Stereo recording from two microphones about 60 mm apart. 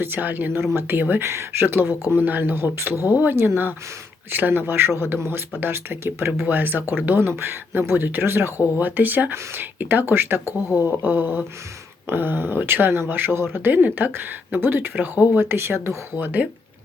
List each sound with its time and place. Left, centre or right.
0.0 s speech: right
1.2 s speech: right
13.7 s speech: right
15.4 s speech: right
16.1 s speech: right